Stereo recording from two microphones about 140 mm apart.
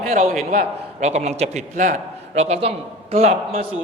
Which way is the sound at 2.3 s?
50° right (ahead or behind).